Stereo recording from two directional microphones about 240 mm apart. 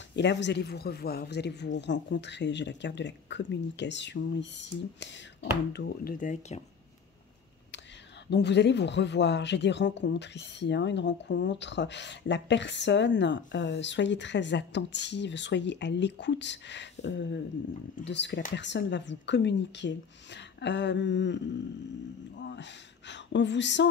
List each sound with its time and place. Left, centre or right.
0.1 s speech: left
8.3 s speech: left
22.4 s speech: left